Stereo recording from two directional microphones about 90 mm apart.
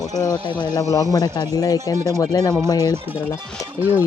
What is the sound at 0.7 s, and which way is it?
Speech, 35° left (ahead or behind).